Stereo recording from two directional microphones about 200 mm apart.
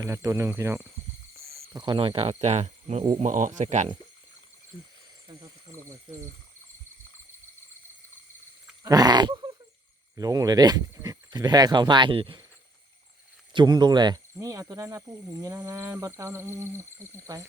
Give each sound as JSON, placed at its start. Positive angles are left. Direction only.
{"t": 0.0, "sound": "speech", "side_deg": -15}
{"t": 8.8, "sound": "goat", "side_deg": -20}
{"t": 10.2, "sound": "speech", "side_deg": -20}
{"t": 13.5, "sound": "speech", "side_deg": -20}